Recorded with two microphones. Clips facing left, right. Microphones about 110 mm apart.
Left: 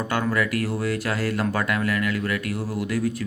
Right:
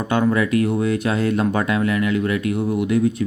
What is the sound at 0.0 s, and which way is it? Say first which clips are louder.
Speech: right 5 dB; 20° right (ahead or behind).